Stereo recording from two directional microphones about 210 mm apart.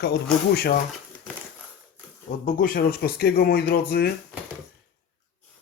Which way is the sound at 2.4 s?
40° left (ahead or behind).